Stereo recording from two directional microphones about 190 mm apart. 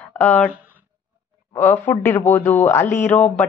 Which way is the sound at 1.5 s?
15° left (ahead or behind).